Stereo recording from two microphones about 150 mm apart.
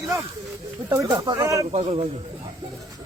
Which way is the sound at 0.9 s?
20° right (ahead or behind).